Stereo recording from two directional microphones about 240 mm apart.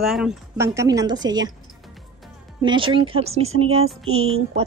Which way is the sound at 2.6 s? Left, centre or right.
Centre.